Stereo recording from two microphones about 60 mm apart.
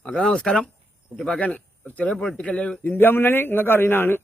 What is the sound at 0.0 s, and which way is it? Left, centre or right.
Speech, centre.